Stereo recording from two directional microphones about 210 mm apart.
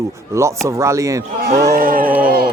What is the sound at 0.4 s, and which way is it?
Speech, 15° right (ahead or behind).